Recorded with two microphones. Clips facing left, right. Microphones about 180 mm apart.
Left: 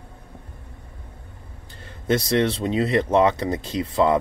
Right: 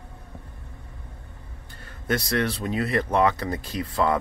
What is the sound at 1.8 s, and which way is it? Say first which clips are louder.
Speech: left 5 dB; 25° left (ahead or behind).